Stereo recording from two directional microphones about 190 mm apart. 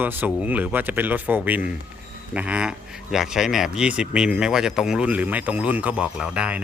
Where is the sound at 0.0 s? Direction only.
10° right (ahead or behind).